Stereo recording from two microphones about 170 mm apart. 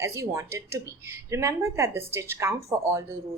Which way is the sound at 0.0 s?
15° right (ahead or behind).